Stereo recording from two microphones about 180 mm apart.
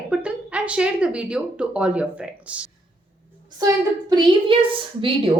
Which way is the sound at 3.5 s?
20° right (ahead or behind).